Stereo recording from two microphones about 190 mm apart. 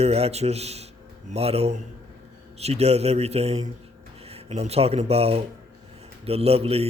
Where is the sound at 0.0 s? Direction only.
35° right (ahead or behind).